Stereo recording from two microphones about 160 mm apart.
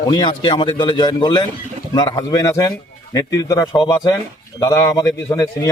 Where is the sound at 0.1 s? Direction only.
25° left (ahead or behind).